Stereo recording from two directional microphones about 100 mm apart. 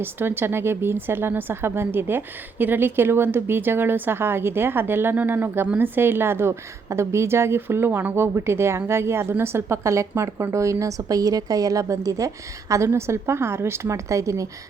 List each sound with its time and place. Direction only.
0.0 s speech: 20° right (ahead or behind)